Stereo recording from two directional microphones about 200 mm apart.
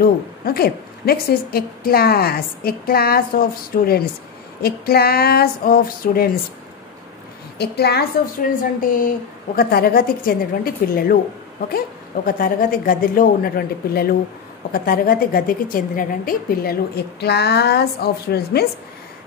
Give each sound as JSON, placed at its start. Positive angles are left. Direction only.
{"t": 0.0, "sound": "a woman's voice", "side_deg": 50}
{"t": 7.5, "sound": "a woman's voice", "side_deg": 55}
{"t": 12.3, "sound": "a woman's voice", "side_deg": 45}